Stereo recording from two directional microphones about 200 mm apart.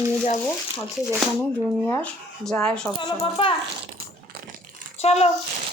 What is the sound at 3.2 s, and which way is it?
Speech, 25° left (ahead or behind).